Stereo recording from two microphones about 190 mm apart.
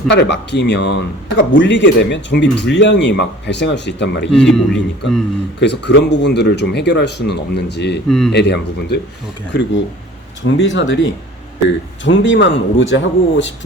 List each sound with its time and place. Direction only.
0.1 s speech: 65° left (ahead or behind)
4.3 s a man's voice: 5° left (ahead or behind)
5.5 s speech: 65° left (ahead or behind)
8.0 s a man's voice: centre (ahead or behind)
8.3 s speech: 60° left (ahead or behind); by 13.5 s 80° left